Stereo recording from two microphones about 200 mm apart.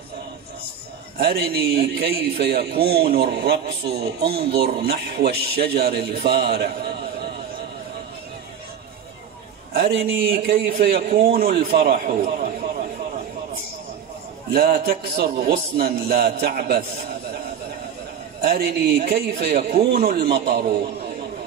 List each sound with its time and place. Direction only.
1.2 s a man's voice: 50° right (ahead or behind)
10.1 s a man's voice: 50° right (ahead or behind)
14.5 s a man's voice: 50° right (ahead or behind)
18.4 s a man's voice: 50° right (ahead or behind)